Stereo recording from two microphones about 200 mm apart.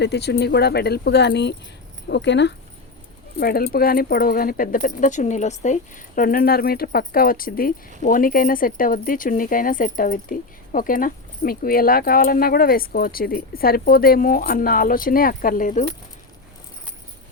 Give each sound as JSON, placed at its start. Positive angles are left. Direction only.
{"t": 0.0, "sound": "speech", "side_deg": 55}
{"t": 3.4, "sound": "speech", "side_deg": 50}